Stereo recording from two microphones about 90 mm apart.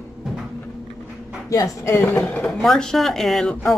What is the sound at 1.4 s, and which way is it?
Speech, 40° left (ahead or behind).